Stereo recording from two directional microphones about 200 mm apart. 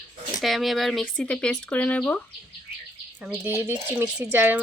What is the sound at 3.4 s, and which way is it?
Speech, 10° right (ahead or behind).